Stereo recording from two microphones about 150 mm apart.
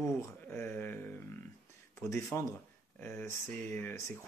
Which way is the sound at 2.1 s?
15° left (ahead or behind).